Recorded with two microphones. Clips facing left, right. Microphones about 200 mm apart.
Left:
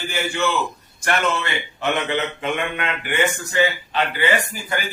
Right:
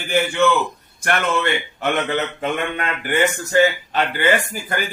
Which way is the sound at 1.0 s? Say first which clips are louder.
Right 2 dB; 50° right (ahead or behind).